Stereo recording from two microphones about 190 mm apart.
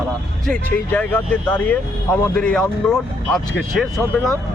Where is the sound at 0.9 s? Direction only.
10° left (ahead or behind).